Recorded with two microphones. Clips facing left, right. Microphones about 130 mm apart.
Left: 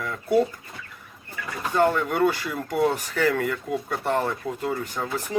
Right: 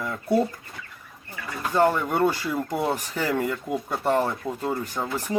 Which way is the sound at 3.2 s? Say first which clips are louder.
Left 4 dB; 30° right (ahead or behind).